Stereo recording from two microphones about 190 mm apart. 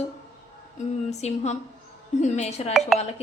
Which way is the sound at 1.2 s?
35° left (ahead or behind).